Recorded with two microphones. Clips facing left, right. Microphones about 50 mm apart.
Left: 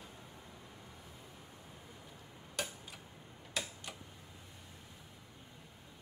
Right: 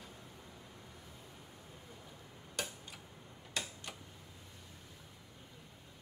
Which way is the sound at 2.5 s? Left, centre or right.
Centre.